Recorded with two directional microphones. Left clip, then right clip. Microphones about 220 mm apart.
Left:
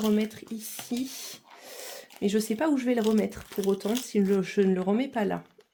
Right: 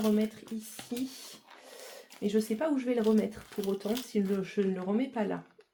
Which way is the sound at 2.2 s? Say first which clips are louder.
Left 4 dB; 55° left (ahead or behind).